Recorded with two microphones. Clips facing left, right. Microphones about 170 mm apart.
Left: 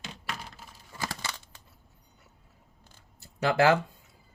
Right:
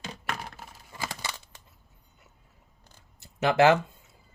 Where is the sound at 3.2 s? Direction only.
20° right (ahead or behind).